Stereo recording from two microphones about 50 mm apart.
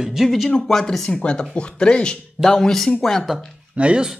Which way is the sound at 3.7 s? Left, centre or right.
Right.